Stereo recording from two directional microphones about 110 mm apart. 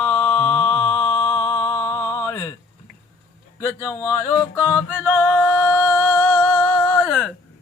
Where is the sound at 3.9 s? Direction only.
30° left (ahead or behind).